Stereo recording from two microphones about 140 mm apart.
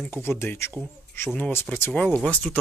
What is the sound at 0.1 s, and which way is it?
Speech, 15° left (ahead or behind).